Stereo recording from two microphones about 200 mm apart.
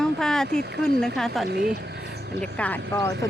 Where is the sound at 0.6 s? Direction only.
50° right (ahead or behind).